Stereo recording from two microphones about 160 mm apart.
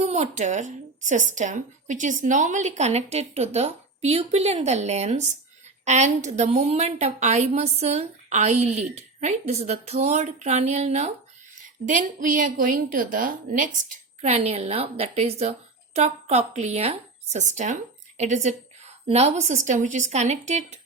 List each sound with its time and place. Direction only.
0.0 s a woman's voice: 45° right (ahead or behind)